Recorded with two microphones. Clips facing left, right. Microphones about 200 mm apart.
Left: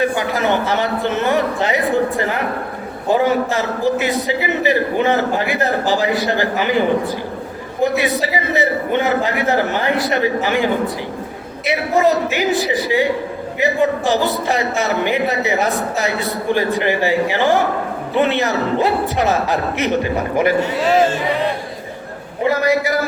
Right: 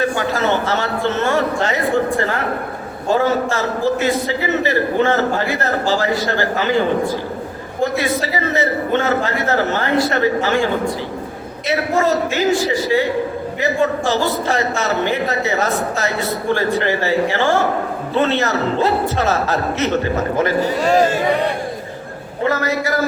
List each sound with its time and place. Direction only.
0.0 s a man's voice: 15° left (ahead or behind)
20.7 s speech: centre (ahead or behind)
22.4 s a man's voice: 15° left (ahead or behind)